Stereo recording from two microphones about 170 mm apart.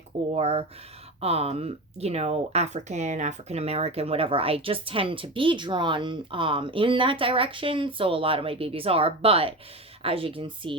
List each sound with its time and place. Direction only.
0.3 s speech: 35° right (ahead or behind)